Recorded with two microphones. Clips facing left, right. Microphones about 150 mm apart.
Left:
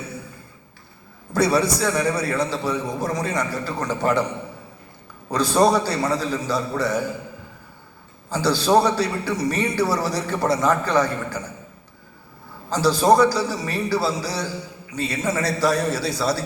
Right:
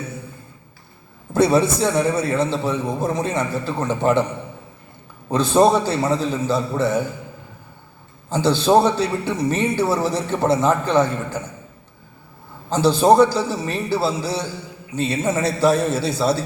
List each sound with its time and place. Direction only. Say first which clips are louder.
1.3 s a man's voice: right 3 dB; 25° right (ahead or behind)
5.3 s a man's voice: right 3 dB; 25° right (ahead or behind)
8.3 s a man's voice: right 2 dB; 25° right (ahead or behind)
12.7 s a man's voice: right 3 dB; 25° right (ahead or behind)